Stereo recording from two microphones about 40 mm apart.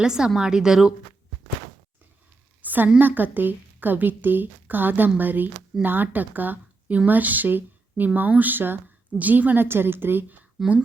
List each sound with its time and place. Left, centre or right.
0.0 s a woman's voice: centre
2.6 s a sound: right
3.0 s a woman's voice: right
9.1 s a woman's voice: right
9.6 s a woman's voice: right
10.6 s a woman's voice: centre